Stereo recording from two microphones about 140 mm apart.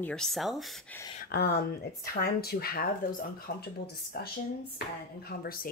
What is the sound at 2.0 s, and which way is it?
Speech, 90° left.